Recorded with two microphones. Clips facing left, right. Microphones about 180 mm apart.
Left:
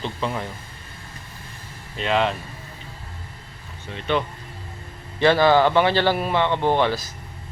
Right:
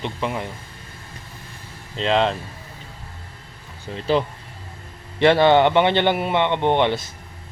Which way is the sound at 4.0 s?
30° right (ahead or behind).